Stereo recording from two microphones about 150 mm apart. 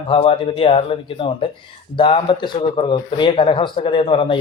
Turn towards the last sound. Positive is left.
turn(degrees=35)  # may be behind; listen again after turning